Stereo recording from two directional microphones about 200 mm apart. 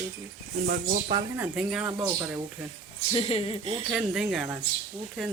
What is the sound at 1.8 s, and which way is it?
Speech, 20° right (ahead or behind).